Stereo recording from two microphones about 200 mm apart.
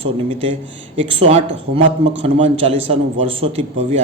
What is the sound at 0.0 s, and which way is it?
A man's voice, 30° right (ahead or behind).